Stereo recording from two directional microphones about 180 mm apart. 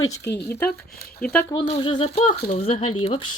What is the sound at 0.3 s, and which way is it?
Speech, 10° left (ahead or behind).